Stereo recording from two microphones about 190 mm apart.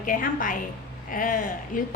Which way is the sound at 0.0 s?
45° left (ahead or behind).